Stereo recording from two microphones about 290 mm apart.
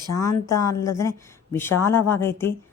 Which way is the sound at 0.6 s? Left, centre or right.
Centre.